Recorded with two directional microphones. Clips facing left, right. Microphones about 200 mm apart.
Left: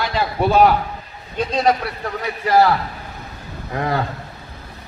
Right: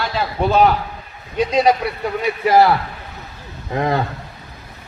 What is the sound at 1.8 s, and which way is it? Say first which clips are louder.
Speech: right 5 dB; 15° right (ahead or behind).